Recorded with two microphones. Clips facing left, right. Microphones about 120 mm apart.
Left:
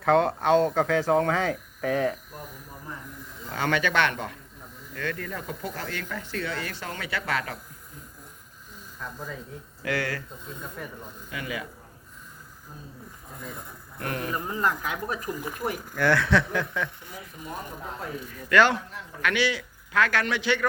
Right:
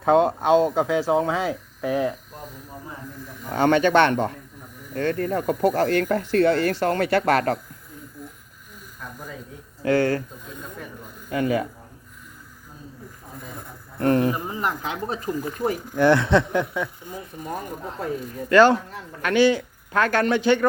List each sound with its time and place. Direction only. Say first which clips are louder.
0.0 s speech: right 3 dB; 20° right (ahead or behind)
3.5 s speech: right 8 dB; 30° right (ahead or behind); by 6.5 s 55° right (ahead or behind)
6.5 s speech: right 13 dB; 40° right (ahead or behind)
9.8 s speech: right 10 dB; 30° right (ahead or behind)
11.3 s speech: right 12 dB; 40° right (ahead or behind)
14.0 s speech: right 10 dB; 25° right (ahead or behind)
17.4 s speech: right 5 dB; 45° right (ahead or behind)